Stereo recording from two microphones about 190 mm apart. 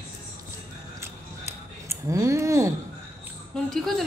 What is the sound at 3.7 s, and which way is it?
Speech, centre (ahead or behind).